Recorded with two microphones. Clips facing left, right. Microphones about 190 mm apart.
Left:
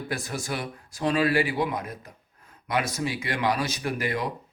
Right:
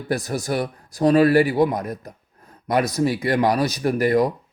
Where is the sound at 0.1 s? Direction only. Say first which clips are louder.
Right 10 dB; 40° right (ahead or behind).